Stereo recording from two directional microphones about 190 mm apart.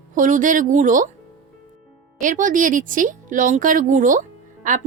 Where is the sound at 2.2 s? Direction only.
45° right (ahead or behind).